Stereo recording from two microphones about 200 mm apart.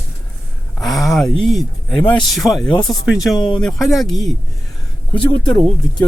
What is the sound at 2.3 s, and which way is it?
Speech, centre (ahead or behind).